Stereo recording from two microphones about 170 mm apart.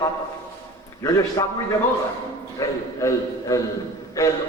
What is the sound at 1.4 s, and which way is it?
Speech, 20° left (ahead or behind).